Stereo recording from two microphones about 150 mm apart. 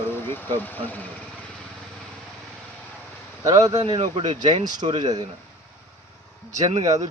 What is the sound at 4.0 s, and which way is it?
Speech, 50° right (ahead or behind).